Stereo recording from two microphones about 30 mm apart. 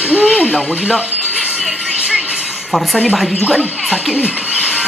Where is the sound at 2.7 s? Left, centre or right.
Centre.